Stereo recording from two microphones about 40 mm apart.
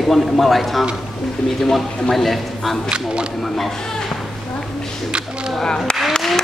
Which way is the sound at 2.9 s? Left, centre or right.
Right.